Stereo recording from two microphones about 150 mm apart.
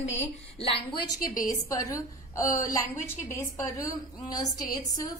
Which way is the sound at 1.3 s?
25° left (ahead or behind).